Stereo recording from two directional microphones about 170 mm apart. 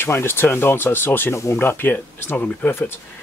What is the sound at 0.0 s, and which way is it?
Speech, 15° left (ahead or behind).